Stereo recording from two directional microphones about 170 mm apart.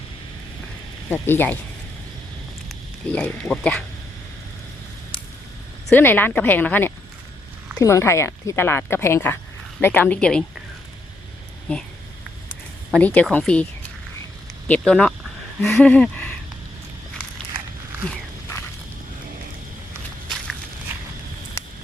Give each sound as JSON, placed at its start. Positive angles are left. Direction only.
{"t": 1.1, "sound": "speech", "side_deg": 10}
{"t": 2.6, "sound": "a sound", "side_deg": 5}
{"t": 3.5, "sound": "speech", "side_deg": 5}
{"t": 5.9, "sound": "speech", "side_deg": 10}
{"t": 11.7, "sound": "speech", "side_deg": 5}
{"t": 12.9, "sound": "speech", "side_deg": 10}
{"t": 14.7, "sound": "speech", "side_deg": 5}
{"t": 21.6, "sound": "a sound", "side_deg": 15}